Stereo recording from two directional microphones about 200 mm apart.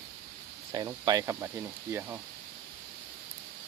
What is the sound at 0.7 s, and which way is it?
Speech, 20° right (ahead or behind).